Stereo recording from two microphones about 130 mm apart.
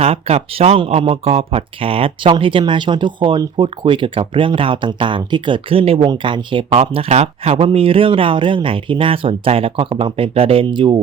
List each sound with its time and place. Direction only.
0.0 s speech: 55° right (ahead or behind)
6.1 s speech: 40° right (ahead or behind)